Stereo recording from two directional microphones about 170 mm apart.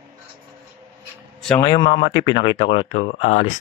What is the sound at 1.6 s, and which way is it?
Speech, 25° left (ahead or behind).